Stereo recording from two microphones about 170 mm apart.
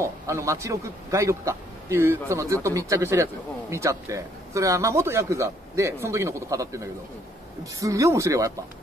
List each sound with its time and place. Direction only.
0.0 s speech: 15° right (ahead or behind)